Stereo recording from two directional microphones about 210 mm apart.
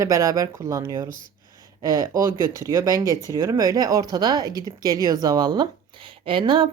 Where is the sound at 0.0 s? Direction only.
15° right (ahead or behind).